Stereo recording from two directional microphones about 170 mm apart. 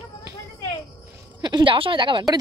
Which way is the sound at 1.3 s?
25° right (ahead or behind).